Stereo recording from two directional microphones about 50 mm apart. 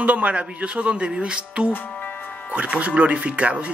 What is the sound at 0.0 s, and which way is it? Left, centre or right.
A man's voice, right.